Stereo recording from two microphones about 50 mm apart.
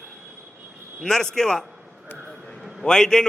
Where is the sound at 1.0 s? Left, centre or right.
Centre.